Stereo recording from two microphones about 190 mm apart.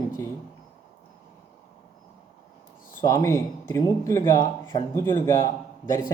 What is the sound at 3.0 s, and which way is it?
A man's voice, 20° left (ahead or behind).